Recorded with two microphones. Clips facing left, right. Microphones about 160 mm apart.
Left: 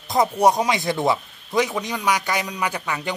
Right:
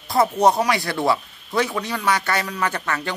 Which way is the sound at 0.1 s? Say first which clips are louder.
Right 1 dB; 15° left (ahead or behind).